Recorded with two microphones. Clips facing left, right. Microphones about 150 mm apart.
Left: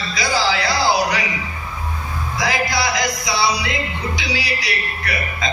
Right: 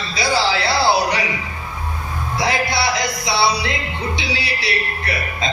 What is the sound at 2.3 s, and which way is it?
Speech, 30° right (ahead or behind).